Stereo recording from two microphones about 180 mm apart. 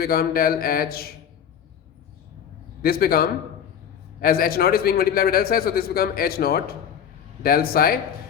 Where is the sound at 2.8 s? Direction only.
55° left (ahead or behind).